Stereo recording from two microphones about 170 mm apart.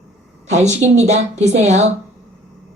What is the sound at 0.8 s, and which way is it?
Speech, 40° right (ahead or behind).